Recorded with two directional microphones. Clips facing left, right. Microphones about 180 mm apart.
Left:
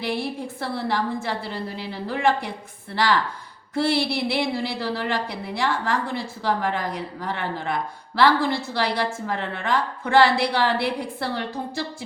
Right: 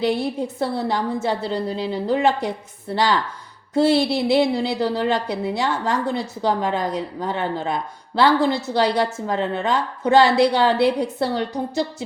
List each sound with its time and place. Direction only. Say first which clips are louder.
0.6 s a woman's voice: right 2 dB; 20° right (ahead or behind)
3.8 s a woman's voice: right 5 dB; 20° right (ahead or behind)